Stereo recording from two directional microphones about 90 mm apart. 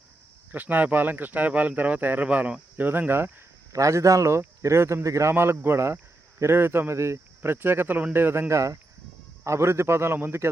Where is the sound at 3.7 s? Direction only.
35° right (ahead or behind).